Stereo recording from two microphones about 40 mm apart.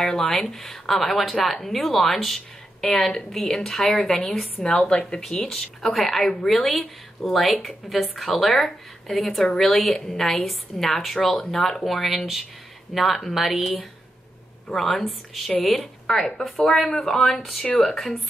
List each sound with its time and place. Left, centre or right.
0.0 s a woman's voice: centre
4.7 s speech: left
5.3 s a woman's voice: centre